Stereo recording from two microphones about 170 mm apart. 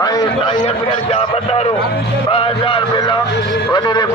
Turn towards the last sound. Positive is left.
turn(degrees=25)  # may be behind; listen again after turning